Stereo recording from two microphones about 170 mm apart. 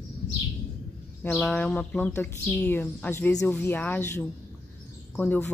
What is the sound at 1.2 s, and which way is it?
Speech, 5° left (ahead or behind).